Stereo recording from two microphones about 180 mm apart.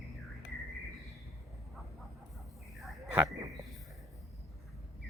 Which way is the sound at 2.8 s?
Centre (ahead or behind).